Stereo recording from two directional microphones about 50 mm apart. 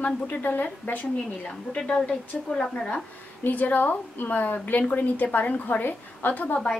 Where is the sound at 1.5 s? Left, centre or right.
Left.